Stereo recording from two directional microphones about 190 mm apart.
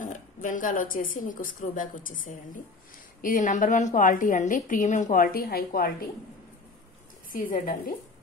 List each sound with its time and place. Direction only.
0.0 s a woman's voice: 45° left (ahead or behind)
7.3 s a woman's voice: 45° left (ahead or behind)